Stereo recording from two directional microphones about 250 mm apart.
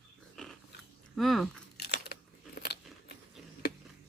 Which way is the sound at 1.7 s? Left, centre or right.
Left.